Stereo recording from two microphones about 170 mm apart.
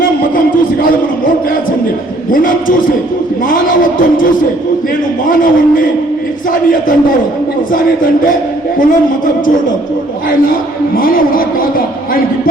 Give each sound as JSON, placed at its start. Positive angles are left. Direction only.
{"t": 2.3, "sound": "speech", "side_deg": 55}
{"t": 5.3, "sound": "a man's voice", "side_deg": 55}
{"t": 10.3, "sound": "a man's voice", "side_deg": 55}